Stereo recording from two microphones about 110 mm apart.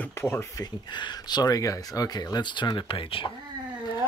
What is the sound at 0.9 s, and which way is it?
Speech, 40° left (ahead or behind).